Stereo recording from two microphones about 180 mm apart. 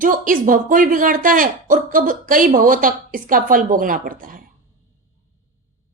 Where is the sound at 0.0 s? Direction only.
50° right (ahead or behind).